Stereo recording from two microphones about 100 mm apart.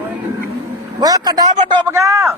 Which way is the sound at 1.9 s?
30° right (ahead or behind).